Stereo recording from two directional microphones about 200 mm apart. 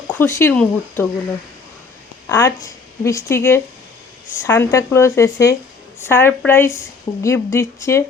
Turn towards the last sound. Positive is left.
turn(degrees=15)  # may be behind; listen again after turning